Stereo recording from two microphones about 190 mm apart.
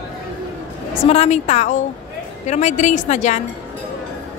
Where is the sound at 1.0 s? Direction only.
35° left (ahead or behind).